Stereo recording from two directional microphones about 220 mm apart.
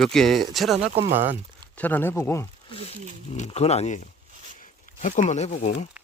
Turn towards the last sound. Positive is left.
turn(degrees=35)  # may be behind; listen again after turning